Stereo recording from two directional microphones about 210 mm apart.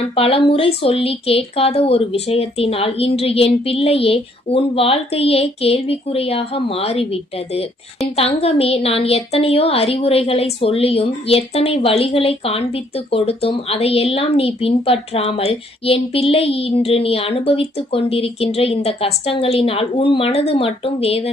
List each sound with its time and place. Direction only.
0.2 s a woman's voice: 25° left (ahead or behind)